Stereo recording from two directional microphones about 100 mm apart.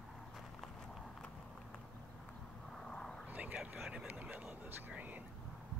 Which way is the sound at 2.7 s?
5° left (ahead or behind).